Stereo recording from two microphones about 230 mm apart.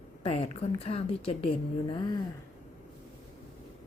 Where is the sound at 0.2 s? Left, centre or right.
Left.